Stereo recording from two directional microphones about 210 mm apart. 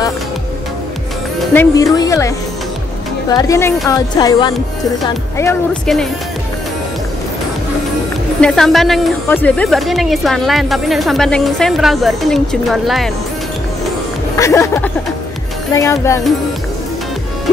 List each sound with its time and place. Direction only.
1.5 s speech: 15° left (ahead or behind)
8.4 s a woman's voice: centre (ahead or behind)
14.3 s speech: 15° left (ahead or behind)